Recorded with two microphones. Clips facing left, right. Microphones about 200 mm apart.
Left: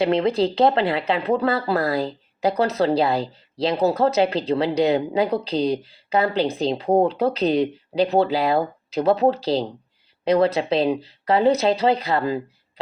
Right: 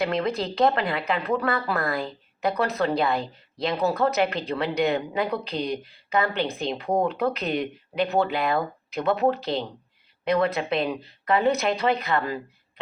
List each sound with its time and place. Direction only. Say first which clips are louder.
0.0 s a woman's voice: left 6 dB; 25° left (ahead or behind)